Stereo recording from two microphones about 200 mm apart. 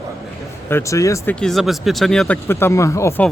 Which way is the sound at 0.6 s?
15° left (ahead or behind).